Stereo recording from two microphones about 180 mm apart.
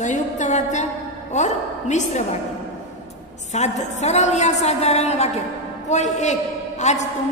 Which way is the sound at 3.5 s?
40° left (ahead or behind).